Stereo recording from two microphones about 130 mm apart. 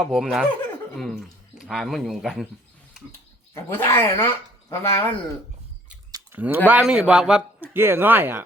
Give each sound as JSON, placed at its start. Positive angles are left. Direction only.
{"t": 0.0, "sound": "speech", "side_deg": 0}
{"t": 3.1, "sound": "speech", "side_deg": 20}
{"t": 6.3, "sound": "a man's voice", "side_deg": -15}
{"t": 7.7, "sound": "a man's voice", "side_deg": -15}